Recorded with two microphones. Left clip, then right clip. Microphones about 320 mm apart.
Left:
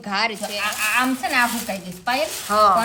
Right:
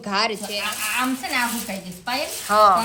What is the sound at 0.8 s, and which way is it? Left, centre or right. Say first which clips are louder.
Speech: left 7 dB; centre.